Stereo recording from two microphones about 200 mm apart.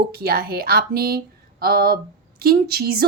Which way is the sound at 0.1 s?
50° right (ahead or behind).